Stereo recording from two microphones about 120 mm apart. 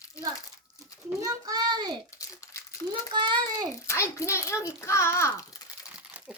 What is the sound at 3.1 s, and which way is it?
Speech, 40° right (ahead or behind).